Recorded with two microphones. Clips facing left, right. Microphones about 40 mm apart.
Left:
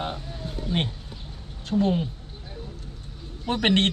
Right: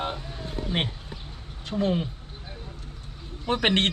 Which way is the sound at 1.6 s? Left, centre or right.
Centre.